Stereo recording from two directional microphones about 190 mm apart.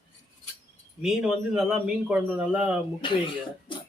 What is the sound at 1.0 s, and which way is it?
Speech, 5° right (ahead or behind).